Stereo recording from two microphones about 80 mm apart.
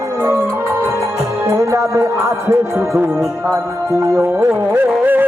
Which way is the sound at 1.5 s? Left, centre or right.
Right.